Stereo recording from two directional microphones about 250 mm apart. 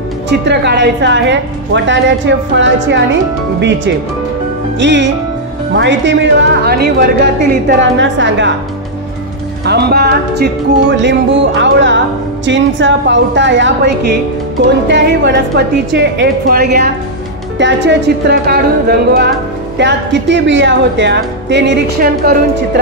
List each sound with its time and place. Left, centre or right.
0.3 s speech: right
4.7 s speech: right
9.7 s a woman's voice: right